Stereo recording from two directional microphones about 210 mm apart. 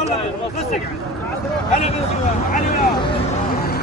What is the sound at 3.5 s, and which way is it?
Vehicle, 45° left (ahead or behind).